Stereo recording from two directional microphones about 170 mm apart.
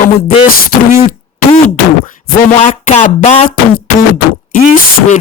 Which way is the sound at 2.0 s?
45° left (ahead or behind).